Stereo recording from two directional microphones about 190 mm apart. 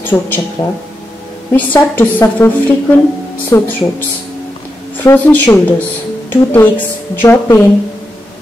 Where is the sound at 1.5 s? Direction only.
10° left (ahead or behind).